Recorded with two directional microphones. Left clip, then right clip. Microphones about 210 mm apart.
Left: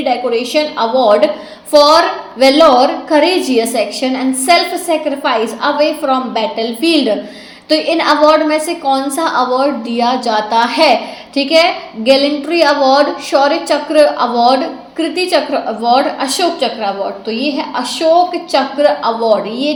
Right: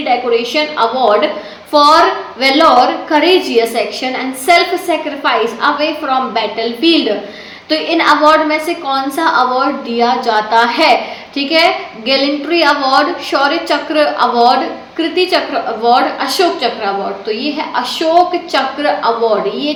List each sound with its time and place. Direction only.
0.0 s a woman's voice: 40° left (ahead or behind)